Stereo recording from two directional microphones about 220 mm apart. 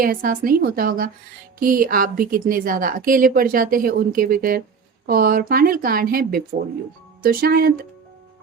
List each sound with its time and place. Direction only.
0.0 s a woman's voice: 40° right (ahead or behind)